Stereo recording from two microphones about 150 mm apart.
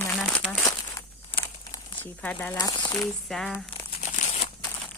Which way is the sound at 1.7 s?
10° left (ahead or behind).